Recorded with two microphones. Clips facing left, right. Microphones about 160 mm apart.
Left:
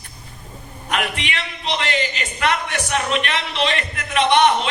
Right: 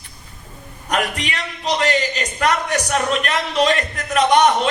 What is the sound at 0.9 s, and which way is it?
A man's voice, 40° right (ahead or behind).